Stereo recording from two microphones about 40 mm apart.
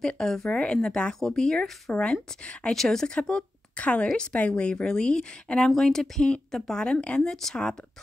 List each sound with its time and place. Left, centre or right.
0.2 s speech: centre
0.5 s speech: left
2.4 s speech: left
2.7 s speech: centre
3.1 s speech: left
3.7 s a woman's voice: left
7.2 s speech: centre